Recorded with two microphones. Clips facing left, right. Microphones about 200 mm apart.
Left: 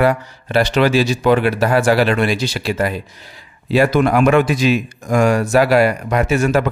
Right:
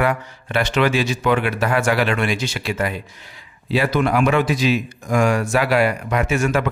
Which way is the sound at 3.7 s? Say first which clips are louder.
Left 5 dB; 45° left (ahead or behind).